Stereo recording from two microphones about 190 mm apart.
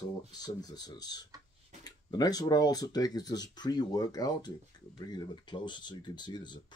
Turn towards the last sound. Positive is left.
turn(degrees=25)  # may be behind; listen again after turning